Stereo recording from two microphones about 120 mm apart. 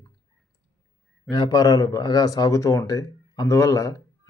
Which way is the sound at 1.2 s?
30° left (ahead or behind).